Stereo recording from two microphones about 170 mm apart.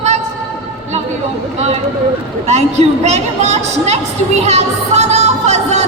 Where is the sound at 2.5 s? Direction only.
40° right (ahead or behind).